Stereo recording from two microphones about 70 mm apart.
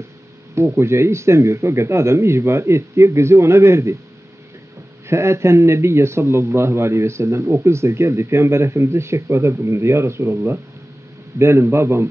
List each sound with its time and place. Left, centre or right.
0.7 s speech: right
5.0 s speech: right